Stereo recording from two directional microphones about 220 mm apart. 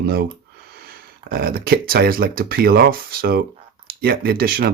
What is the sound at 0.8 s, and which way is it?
Speech, 45° right (ahead or behind).